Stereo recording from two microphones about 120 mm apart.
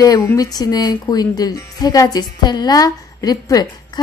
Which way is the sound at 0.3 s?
30° left (ahead or behind).